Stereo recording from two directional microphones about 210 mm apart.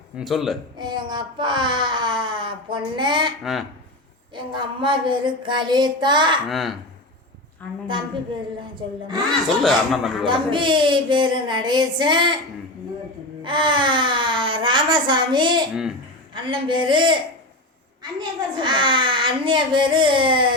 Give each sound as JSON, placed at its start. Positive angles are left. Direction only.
{"t": 0.2, "sound": "a man's voice", "side_deg": 0}
{"t": 0.8, "sound": "speech", "side_deg": -20}
{"t": 3.4, "sound": "a man's voice", "side_deg": 0}
{"t": 4.4, "sound": "a child's voice", "side_deg": -20}
{"t": 6.5, "sound": "a man's voice", "side_deg": 0}
{"t": 7.9, "sound": "a child's voice", "side_deg": -20}
{"t": 9.6, "sound": "a man's voice", "side_deg": 0}
{"t": 10.2, "sound": "a child's voice", "side_deg": -25}
{"t": 13.4, "sound": "a child's voice", "side_deg": -20}
{"t": 18.2, "sound": "a child's voice", "side_deg": -20}